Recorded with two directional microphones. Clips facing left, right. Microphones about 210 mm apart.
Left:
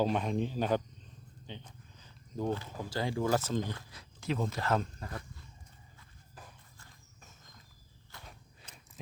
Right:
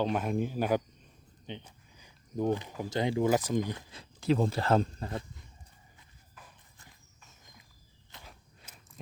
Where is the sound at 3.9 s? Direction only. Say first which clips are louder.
Right 8 dB; 30° right (ahead or behind).